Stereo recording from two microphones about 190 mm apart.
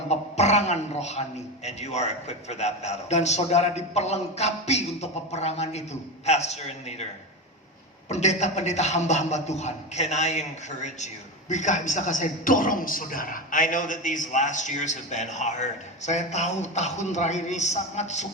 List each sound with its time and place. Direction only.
0.1 s a man's voice: 35° left (ahead or behind)
8.1 s a man's voice: 35° left (ahead or behind)